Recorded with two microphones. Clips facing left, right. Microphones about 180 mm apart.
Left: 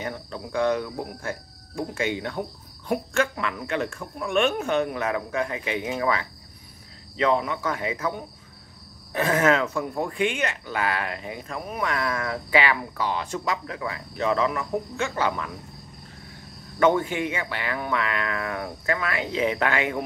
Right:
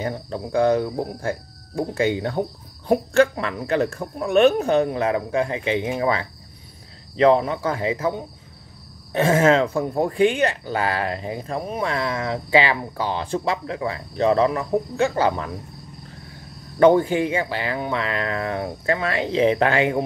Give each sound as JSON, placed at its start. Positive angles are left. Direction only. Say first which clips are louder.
{"t": 0.0, "sound": "speech", "louder": "right 5 dB", "side_deg": -35}
{"t": 16.8, "sound": "speech", "louder": "right 6 dB", "side_deg": -35}